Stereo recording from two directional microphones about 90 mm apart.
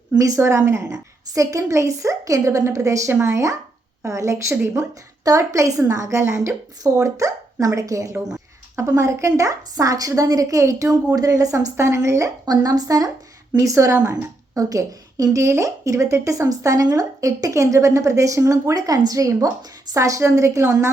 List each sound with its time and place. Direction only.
0.2 s a woman's voice: 35° right (ahead or behind)